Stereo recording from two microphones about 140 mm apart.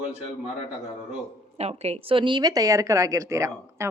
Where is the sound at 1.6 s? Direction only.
50° right (ahead or behind).